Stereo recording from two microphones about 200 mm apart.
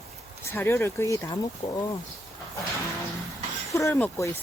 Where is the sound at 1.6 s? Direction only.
30° left (ahead or behind).